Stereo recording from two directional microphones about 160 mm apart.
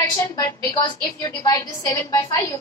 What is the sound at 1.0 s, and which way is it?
A woman's voice, 25° left (ahead or behind).